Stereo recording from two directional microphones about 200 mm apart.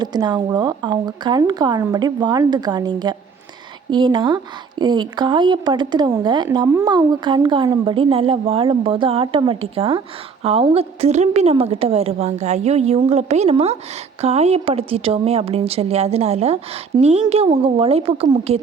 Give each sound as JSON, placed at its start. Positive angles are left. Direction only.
{"t": 0.0, "sound": "a woman's voice", "side_deg": -20}